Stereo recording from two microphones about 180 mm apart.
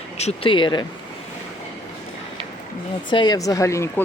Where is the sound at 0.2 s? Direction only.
35° left (ahead or behind).